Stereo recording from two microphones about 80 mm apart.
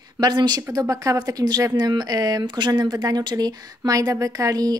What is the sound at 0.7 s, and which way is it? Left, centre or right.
A woman's voice, right.